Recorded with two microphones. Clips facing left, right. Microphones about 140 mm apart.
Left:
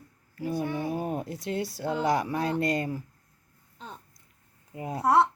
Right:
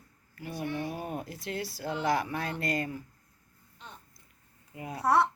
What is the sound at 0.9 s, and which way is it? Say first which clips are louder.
Speech: left 6 dB; 25° left (ahead or behind).